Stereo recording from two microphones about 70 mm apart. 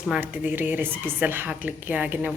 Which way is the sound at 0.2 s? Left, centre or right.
Right.